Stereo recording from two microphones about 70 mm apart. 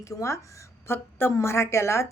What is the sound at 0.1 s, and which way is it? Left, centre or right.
Speech, left.